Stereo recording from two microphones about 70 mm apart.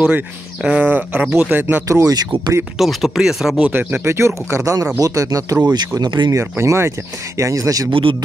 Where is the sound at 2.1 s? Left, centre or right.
Right.